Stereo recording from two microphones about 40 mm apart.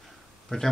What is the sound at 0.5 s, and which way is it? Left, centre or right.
Speech, left.